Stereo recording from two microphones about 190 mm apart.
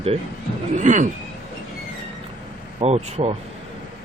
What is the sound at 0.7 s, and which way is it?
Speech, 40° right (ahead or behind).